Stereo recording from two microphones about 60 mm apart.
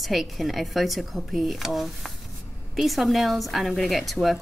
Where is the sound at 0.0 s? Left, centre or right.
Centre.